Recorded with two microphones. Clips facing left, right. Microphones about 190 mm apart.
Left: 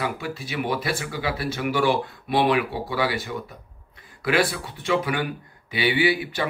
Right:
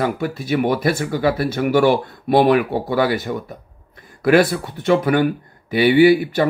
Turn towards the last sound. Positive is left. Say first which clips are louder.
# right 10 dB
turn(degrees=-45)  # may be behind; listen again after turning